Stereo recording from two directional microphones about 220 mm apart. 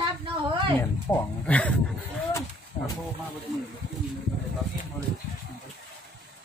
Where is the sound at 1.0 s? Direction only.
5° left (ahead or behind).